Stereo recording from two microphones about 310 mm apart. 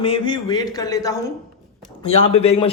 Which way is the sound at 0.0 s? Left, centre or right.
Centre.